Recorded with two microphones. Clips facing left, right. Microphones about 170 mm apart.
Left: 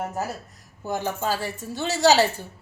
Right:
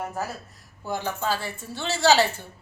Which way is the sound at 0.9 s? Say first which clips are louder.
Left 2 dB; 15° left (ahead or behind).